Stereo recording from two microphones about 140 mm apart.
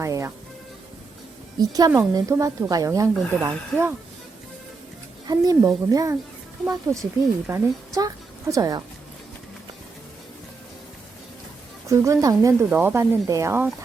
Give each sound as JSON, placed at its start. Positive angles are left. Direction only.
{"t": 0.0, "sound": "music", "side_deg": -20}
{"t": 1.5, "sound": "a woman's voice", "side_deg": -30}
{"t": 5.2, "sound": "a woman's voice", "side_deg": -25}
{"t": 11.9, "sound": "a woman's voice", "side_deg": -20}